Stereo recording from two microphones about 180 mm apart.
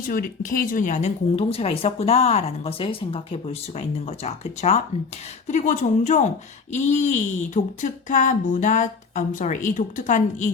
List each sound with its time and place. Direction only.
0.1 s a woman's voice: 50° left (ahead or behind)